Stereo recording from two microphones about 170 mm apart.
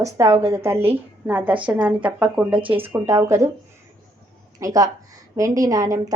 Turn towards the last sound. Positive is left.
turn(degrees=-20)  # may be behind; listen again after turning